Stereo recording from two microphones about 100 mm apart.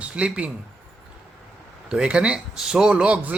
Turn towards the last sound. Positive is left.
turn(degrees=-10)  # may be behind; listen again after turning